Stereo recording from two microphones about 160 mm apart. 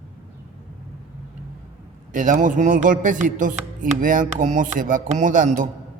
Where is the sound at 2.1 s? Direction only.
55° right (ahead or behind).